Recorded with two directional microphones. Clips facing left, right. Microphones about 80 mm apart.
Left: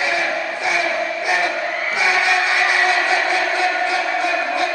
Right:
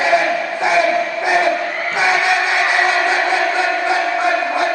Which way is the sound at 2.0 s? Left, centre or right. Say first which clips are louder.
Right 3 dB; right.